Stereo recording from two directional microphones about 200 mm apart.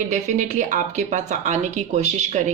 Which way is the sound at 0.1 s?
35° right (ahead or behind).